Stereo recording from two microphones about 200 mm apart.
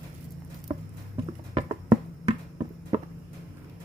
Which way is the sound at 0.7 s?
20° right (ahead or behind).